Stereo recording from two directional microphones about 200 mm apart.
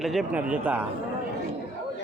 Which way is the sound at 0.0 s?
Centre (ahead or behind).